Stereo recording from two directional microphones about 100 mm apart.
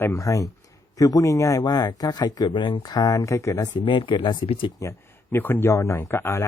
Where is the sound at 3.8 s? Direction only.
55° left (ahead or behind).